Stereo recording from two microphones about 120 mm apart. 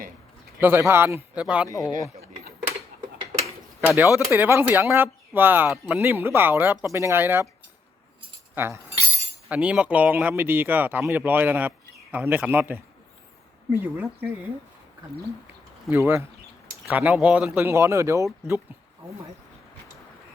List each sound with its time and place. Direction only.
0.6 s speech: 20° right (ahead or behind)
1.6 s speech: 30° left (ahead or behind)
3.4 s speech: 15° right (ahead or behind)
8.5 s speech: 20° right (ahead or behind)
9.5 s speech: 10° right (ahead or behind)
15.9 s speech: centre (ahead or behind)
16.9 s speech: 10° right (ahead or behind)
17.6 s speech: 20° right (ahead or behind)